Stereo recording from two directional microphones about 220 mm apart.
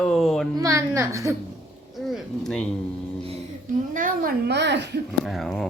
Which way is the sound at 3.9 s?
40° right (ahead or behind).